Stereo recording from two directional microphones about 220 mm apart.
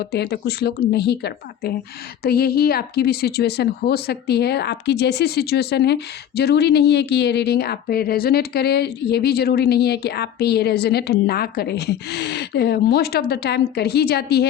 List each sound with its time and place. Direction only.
0.0 s speech: 45° left (ahead or behind)